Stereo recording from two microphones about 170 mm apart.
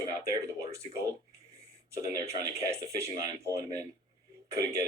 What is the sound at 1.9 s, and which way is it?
Speech, 20° right (ahead or behind).